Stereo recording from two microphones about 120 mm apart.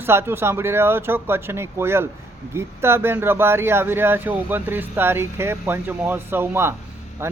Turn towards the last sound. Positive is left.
turn(degrees=-20)  # may be behind; listen again after turning